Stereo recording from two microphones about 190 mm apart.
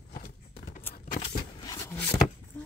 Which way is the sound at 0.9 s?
50° left (ahead or behind).